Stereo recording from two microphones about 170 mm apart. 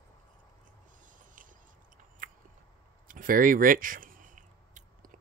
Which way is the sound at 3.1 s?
55° right (ahead or behind).